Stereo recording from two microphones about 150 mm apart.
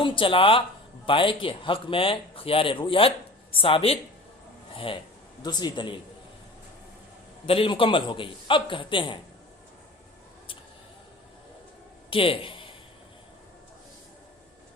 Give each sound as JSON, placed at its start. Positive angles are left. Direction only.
{"t": 0.0, "sound": "speech", "side_deg": 35}
{"t": 7.4, "sound": "speech", "side_deg": 40}
{"t": 12.1, "sound": "speech", "side_deg": 35}